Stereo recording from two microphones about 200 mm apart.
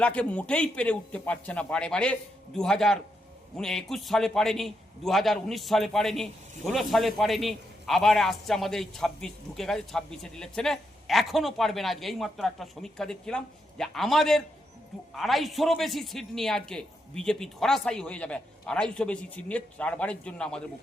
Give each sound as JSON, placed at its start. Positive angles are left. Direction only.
{"t": 0.0, "sound": "a man's voice", "side_deg": 5}